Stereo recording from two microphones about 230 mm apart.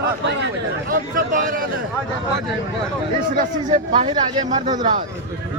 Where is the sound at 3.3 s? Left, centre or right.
Right.